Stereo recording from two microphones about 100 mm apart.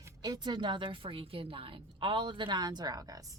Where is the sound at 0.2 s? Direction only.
45° right (ahead or behind).